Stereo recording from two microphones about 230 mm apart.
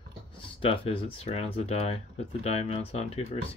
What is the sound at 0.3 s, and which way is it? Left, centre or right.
Speech, left.